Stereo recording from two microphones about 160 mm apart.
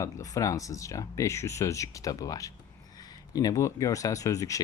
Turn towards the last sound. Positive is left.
turn(degrees=20)  # may be behind; listen again after turning